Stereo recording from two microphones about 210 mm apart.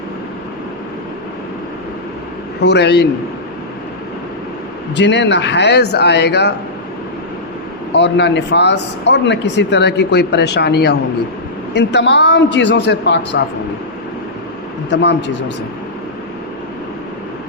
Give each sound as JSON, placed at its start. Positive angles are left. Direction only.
{"t": 2.6, "sound": "speech", "side_deg": 55}
{"t": 4.9, "sound": "speech", "side_deg": 55}
{"t": 7.9, "sound": "speech", "side_deg": 55}
{"t": 14.8, "sound": "speech", "side_deg": 55}